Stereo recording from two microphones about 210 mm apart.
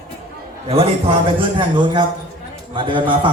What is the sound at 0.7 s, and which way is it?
A man's voice, 25° right (ahead or behind).